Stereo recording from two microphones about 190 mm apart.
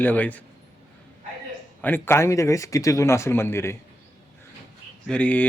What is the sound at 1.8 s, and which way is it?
A man's voice, 10° left (ahead or behind).